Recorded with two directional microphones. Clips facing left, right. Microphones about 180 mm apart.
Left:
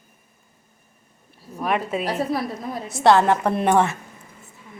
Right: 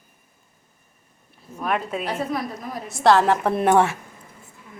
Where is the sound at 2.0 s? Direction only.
35° left (ahead or behind).